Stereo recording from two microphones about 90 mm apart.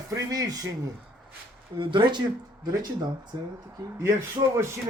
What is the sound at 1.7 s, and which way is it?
Speech, 65° right (ahead or behind).